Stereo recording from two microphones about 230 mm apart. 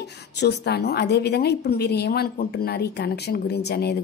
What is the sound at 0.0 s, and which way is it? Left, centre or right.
A woman's voice, left.